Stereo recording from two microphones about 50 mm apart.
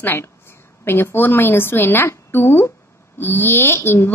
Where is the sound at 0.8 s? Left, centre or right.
Left.